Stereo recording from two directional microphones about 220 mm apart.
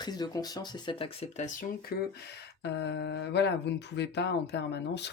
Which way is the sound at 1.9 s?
45° left (ahead or behind).